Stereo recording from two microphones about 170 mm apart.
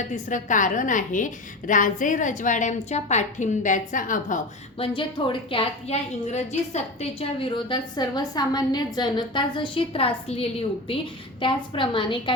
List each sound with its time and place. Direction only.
0.3 s a woman's voice: 50° left (ahead or behind)
4.8 s a woman's voice: 30° left (ahead or behind)